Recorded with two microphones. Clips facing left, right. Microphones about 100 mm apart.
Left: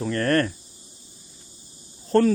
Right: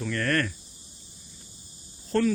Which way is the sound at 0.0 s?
35° left (ahead or behind).